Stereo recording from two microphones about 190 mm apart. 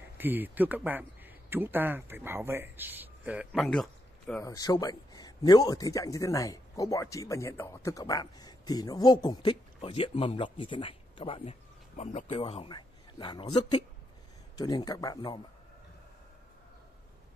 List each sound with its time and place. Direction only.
0.2 s speech: 10° right (ahead or behind)
3.6 s speech: 5° left (ahead or behind)
4.4 s speech: 20° left (ahead or behind)